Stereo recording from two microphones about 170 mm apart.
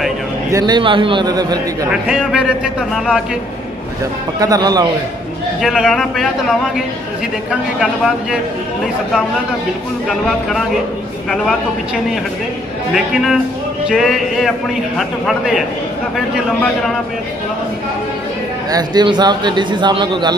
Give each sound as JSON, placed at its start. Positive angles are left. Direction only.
{"t": 0.5, "sound": "a man's voice", "side_deg": -20}
{"t": 1.9, "sound": "a man's voice", "side_deg": -5}
{"t": 4.4, "sound": "a man's voice", "side_deg": -20}
{"t": 5.6, "sound": "a man's voice", "side_deg": 0}
{"t": 7.8, "sound": "a man's voice", "side_deg": -5}
{"t": 10.0, "sound": "a man's voice", "side_deg": 0}
{"t": 12.9, "sound": "a man's voice", "side_deg": 0}
{"t": 18.7, "sound": "a man's voice", "side_deg": -25}